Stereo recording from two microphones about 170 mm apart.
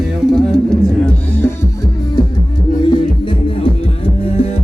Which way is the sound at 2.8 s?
30° left (ahead or behind).